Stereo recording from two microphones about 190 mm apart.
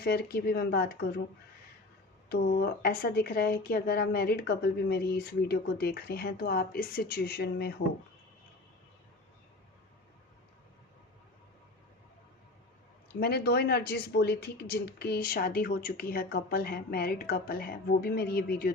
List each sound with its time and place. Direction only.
0.0 s speech: 55° left (ahead or behind)
2.3 s speech: 55° left (ahead or behind)
13.1 s speech: 55° left (ahead or behind)